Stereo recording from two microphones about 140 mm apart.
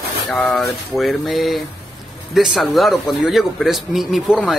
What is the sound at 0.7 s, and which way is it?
Speech, centre (ahead or behind).